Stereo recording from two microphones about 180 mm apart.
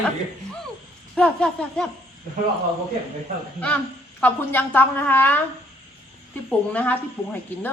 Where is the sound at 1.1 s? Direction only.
5° left (ahead or behind).